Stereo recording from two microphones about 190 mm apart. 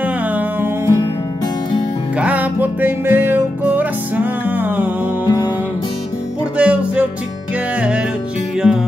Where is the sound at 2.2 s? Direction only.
10° right (ahead or behind).